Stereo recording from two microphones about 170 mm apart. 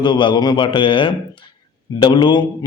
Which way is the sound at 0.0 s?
30° left (ahead or behind).